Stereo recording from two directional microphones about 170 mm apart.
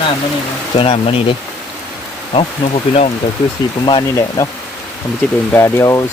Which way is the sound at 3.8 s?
25° left (ahead or behind).